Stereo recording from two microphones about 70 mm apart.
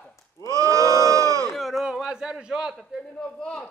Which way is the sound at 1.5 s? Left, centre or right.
Centre.